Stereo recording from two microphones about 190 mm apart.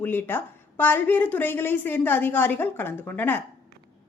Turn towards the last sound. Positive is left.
turn(degrees=10)  # may be behind; listen again after turning